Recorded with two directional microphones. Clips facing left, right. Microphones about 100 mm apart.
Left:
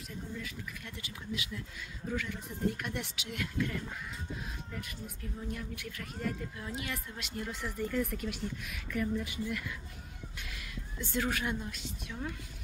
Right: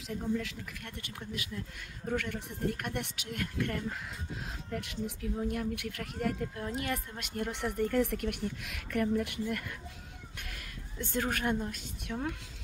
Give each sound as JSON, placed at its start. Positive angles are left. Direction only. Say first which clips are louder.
{"t": 0.1, "sound": "speech", "louder": "right 9 dB", "side_deg": -90}
{"t": 3.6, "sound": "speech", "louder": "right 2 dB", "side_deg": -65}
{"t": 4.5, "sound": "speech", "louder": "right 4 dB", "side_deg": -75}
{"t": 6.6, "sound": "a woman's voice", "louder": "right 4 dB", "side_deg": -50}